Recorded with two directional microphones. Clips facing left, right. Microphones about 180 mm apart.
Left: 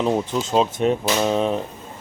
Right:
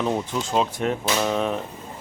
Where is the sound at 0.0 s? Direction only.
20° left (ahead or behind).